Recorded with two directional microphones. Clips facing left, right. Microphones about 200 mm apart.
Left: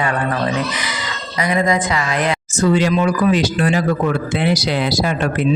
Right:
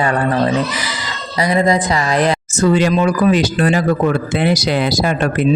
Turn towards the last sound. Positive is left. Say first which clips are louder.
# right 2 dB
turn(degrees=-45)  # may be behind; listen again after turning